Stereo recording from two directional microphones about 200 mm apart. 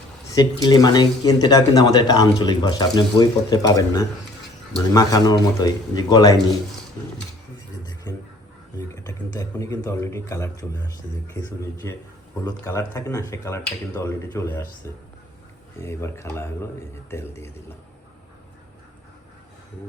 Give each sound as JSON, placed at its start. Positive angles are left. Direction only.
{"t": 0.3, "sound": "speech", "side_deg": 20}
{"t": 8.9, "sound": "speech", "side_deg": 15}
{"t": 11.8, "sound": "speech", "side_deg": 15}
{"t": 15.8, "sound": "speech", "side_deg": 15}